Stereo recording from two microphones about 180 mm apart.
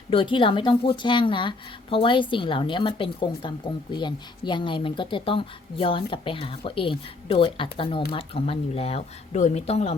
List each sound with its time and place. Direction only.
0.1 s a woman's voice: 25° left (ahead or behind)